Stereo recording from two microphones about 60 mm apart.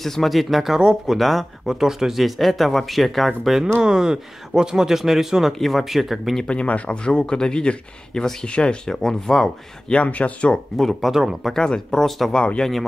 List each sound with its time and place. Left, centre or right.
0.0 s speech: centre
0.7 s speech: centre
1.1 s speech: centre
6.4 s speech: centre
9.9 s speech: left
10.8 s speech: centre
11.5 s speech: centre